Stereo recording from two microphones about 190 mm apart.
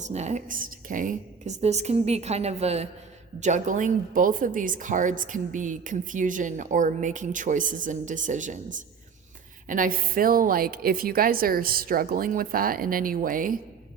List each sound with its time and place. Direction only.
0.0 s a woman's voice: 35° right (ahead or behind)